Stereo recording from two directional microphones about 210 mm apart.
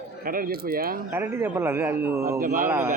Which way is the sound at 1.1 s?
10° right (ahead or behind).